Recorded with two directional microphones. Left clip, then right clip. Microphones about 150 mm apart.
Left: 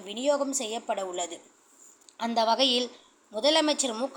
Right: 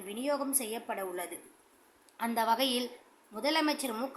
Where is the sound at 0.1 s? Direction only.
20° left (ahead or behind).